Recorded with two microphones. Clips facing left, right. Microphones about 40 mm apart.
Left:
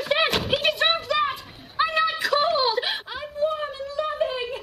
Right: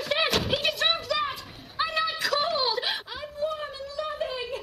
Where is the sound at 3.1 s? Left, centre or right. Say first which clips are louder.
Left 5 dB; centre.